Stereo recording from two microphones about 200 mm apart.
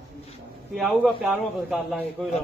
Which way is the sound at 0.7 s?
Centre (ahead or behind).